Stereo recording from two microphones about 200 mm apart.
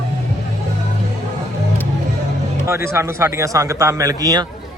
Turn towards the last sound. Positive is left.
turn(degrees=-20)  # may be behind; listen again after turning